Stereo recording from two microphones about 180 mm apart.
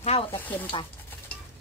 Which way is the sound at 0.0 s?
35° left (ahead or behind).